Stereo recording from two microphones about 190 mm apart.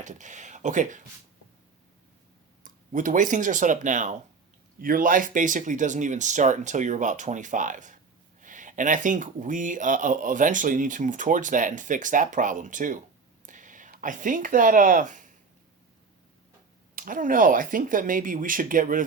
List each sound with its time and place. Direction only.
0.0 s speech: 40° right (ahead or behind)
2.6 s speech: 45° right (ahead or behind)
13.4 s a sound: 45° right (ahead or behind)
16.9 s speech: 45° right (ahead or behind)